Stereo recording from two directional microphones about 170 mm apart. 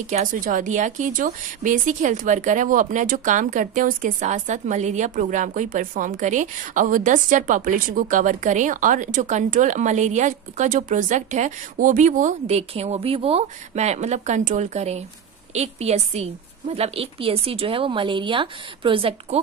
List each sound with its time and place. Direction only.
0.0 s a woman's voice: 45° right (ahead or behind)